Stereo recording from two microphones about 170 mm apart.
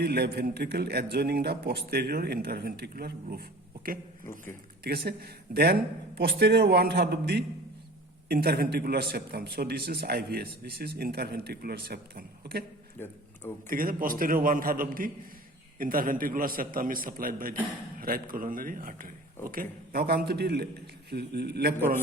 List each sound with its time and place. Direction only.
0.0 s a man's voice: 70° right (ahead or behind)
4.8 s a man's voice: 65° right (ahead or behind)
13.0 s speech: 10° left (ahead or behind)
13.7 s a man's voice: 55° right (ahead or behind); by 21.8 s 70° right (ahead or behind)